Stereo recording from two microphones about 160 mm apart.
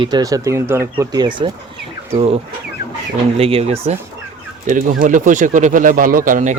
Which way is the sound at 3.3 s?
40° right (ahead or behind).